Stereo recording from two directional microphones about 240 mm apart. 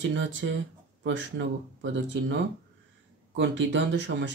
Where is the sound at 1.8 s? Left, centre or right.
Right.